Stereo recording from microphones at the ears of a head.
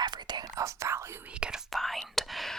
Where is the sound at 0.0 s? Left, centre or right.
Right.